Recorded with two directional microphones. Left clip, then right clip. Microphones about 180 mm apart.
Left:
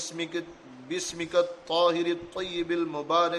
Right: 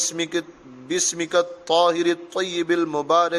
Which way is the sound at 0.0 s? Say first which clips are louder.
Right 8 dB; 45° right (ahead or behind).